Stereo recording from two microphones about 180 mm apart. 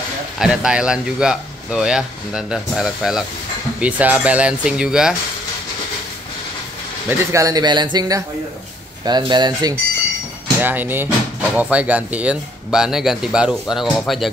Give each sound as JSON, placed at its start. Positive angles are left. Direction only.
{"t": 0.4, "sound": "a man's voice", "side_deg": -5}
{"t": 7.1, "sound": "speech", "side_deg": -20}
{"t": 10.6, "sound": "a man's voice", "side_deg": -10}